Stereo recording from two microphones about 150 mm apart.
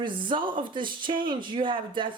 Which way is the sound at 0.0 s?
35° right (ahead or behind).